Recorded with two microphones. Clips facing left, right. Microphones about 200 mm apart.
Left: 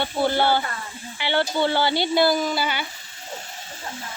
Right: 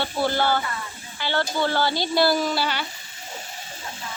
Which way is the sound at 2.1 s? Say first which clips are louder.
Even; centre (ahead or behind).